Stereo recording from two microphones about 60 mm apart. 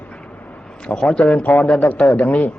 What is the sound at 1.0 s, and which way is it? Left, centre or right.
A man's voice, centre.